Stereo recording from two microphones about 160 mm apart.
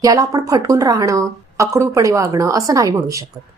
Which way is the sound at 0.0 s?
20° right (ahead or behind).